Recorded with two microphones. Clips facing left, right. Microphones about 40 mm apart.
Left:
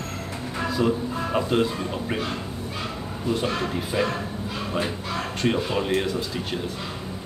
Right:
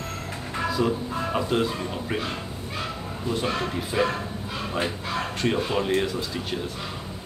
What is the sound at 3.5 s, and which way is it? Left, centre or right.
Speech, centre.